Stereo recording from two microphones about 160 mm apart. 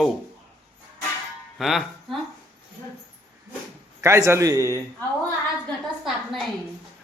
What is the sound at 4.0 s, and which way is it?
Speech, 20° right (ahead or behind).